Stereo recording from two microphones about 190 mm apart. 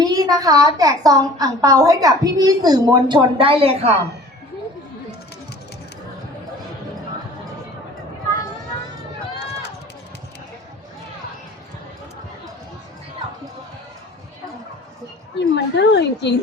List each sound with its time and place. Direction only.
0.0 s a woman's voice: 20° right (ahead or behind)
15.4 s speech: 65° left (ahead or behind)